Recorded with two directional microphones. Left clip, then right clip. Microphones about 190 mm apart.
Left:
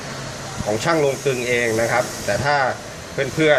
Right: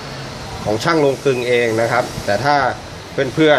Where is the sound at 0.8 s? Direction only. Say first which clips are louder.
Right 4 dB; 20° right (ahead or behind).